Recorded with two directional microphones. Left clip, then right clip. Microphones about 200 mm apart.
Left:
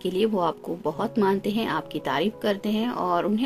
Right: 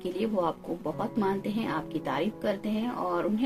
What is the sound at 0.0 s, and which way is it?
A woman's voice, 50° left (ahead or behind).